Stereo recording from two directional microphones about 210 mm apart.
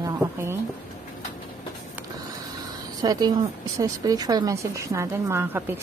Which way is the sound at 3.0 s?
20° right (ahead or behind).